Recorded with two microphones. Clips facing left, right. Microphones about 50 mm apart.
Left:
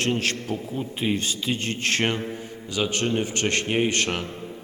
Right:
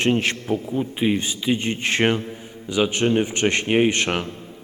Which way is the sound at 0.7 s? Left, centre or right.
Centre.